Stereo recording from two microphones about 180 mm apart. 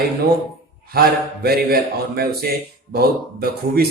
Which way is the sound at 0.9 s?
60° right (ahead or behind).